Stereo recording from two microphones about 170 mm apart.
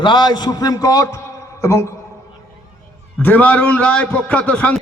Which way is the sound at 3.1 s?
10° left (ahead or behind).